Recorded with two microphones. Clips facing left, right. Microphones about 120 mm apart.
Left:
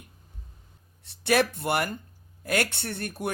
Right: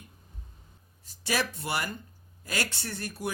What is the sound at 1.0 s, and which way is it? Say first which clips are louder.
Speech: left 7 dB; 65° left (ahead or behind).